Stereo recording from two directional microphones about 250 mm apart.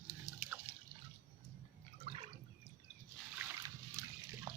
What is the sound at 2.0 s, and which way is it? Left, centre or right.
Water, right.